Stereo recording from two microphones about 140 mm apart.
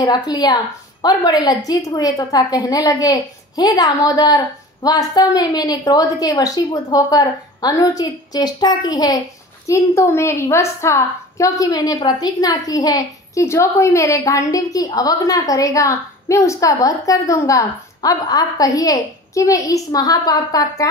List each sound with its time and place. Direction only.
0.0 s a woman's voice: 30° left (ahead or behind)